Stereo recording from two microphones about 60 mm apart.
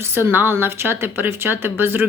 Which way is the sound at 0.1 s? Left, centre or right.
Right.